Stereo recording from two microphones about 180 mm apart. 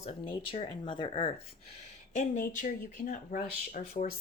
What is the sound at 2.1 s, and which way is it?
Speech, 45° left (ahead or behind).